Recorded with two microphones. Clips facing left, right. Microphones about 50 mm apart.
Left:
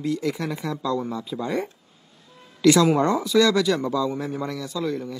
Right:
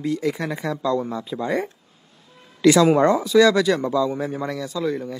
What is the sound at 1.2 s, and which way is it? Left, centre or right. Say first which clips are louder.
A man's voice: right 3 dB; centre.